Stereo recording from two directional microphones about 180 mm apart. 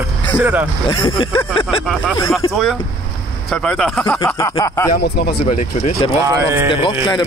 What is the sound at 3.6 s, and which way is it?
Speech, 5° left (ahead or behind).